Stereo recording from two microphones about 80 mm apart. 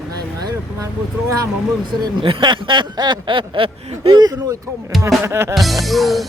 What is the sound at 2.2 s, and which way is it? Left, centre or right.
Speech, right.